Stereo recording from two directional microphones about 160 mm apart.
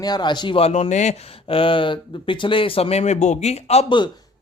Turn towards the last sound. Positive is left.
turn(degrees=35)  # may be behind; listen again after turning